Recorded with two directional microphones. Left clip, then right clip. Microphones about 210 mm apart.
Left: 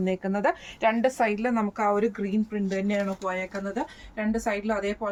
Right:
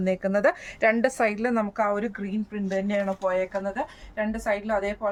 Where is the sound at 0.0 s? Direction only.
30° right (ahead or behind); by 3.0 s 10° right (ahead or behind).